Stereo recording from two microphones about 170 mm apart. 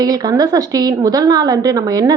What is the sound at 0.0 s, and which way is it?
A woman's voice, 25° right (ahead or behind).